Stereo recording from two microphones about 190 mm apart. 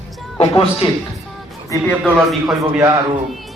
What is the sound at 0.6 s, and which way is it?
Speech, 30° left (ahead or behind).